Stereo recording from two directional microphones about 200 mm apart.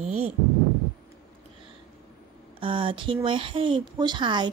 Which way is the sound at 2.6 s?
25° right (ahead or behind).